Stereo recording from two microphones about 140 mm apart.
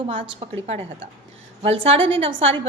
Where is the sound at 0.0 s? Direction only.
40° right (ahead or behind).